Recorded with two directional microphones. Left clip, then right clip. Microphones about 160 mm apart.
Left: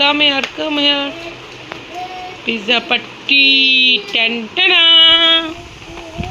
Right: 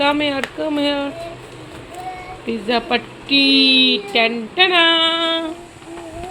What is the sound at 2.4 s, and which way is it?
Speech, 10° right (ahead or behind).